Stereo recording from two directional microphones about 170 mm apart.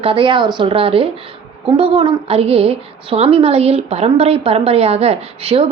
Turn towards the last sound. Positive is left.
turn(degrees=-35)  # may be behind; listen again after turning